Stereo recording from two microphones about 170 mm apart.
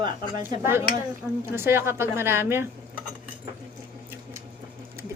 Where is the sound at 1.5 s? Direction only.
15° right (ahead or behind).